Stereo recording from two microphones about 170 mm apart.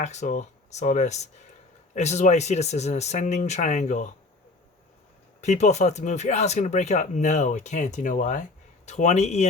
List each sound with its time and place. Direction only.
0.0 s speech: 45° left (ahead or behind)
5.4 s speech: 40° left (ahead or behind)